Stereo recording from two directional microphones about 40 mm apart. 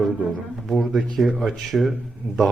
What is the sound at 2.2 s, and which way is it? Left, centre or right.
Speech, right.